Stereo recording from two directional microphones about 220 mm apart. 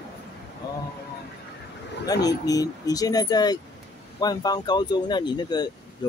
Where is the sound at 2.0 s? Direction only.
15° left (ahead or behind).